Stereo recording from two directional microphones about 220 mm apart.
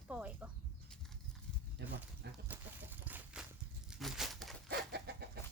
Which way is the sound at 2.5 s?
5° right (ahead or behind).